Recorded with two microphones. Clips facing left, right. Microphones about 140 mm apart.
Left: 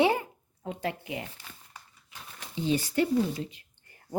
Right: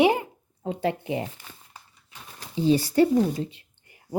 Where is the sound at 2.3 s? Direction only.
35° right (ahead or behind).